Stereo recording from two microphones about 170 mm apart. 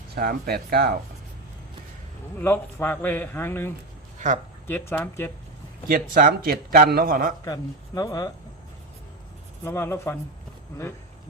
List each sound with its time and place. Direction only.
0.2 s a man's voice: 65° right (ahead or behind)
2.4 s a man's voice: 10° left (ahead or behind)
5.9 s a man's voice: 55° right (ahead or behind)
7.4 s speech: 20° left (ahead or behind)
9.6 s a man's voice: 15° left (ahead or behind)